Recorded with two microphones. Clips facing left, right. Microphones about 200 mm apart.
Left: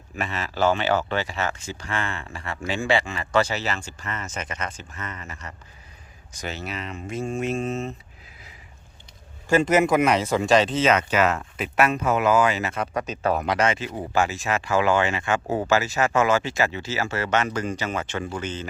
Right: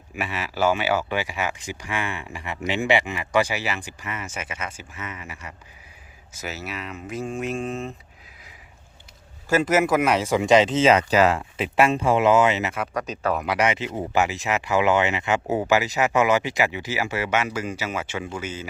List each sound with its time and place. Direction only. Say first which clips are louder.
0.2 s speech: even; 10° right (ahead or behind)
9.5 s speech: left 1 dB; 5° right (ahead or behind); by 12.7 s 20° right (ahead or behind)
12.7 s speech: left 1 dB; 30° left (ahead or behind)
13.5 s speech: even; 15° right (ahead or behind)